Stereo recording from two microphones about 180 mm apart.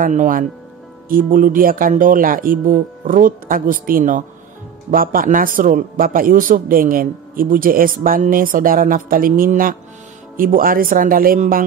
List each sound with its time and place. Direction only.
0.0 s a man's voice: 45° right (ahead or behind)